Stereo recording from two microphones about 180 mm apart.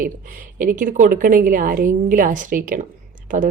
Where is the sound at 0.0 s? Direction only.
50° right (ahead or behind).